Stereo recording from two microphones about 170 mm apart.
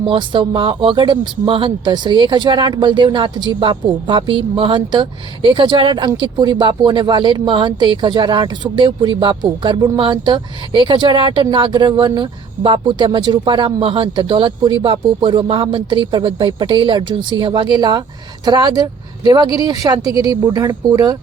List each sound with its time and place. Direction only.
0.1 s speech: 30° right (ahead or behind)